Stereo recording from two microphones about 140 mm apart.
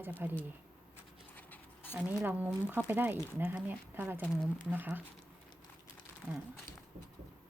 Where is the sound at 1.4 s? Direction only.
15° left (ahead or behind).